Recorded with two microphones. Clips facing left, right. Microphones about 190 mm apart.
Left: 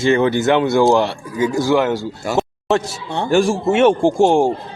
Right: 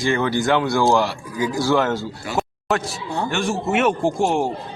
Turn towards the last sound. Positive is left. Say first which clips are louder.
# left 6 dB
turn(degrees=30)  # may be behind; listen again after turning